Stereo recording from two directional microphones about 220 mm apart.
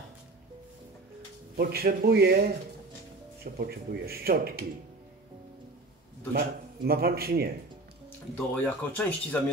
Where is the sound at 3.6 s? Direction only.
45° right (ahead or behind).